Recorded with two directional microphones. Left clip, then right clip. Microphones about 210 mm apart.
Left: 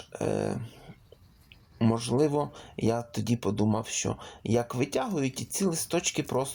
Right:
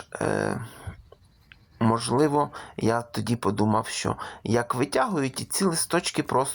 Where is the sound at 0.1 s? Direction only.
5° right (ahead or behind).